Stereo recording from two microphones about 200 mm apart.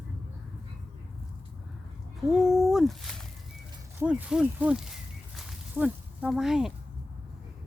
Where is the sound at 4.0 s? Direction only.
5° right (ahead or behind).